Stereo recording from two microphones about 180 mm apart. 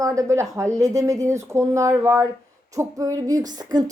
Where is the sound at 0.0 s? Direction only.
15° right (ahead or behind).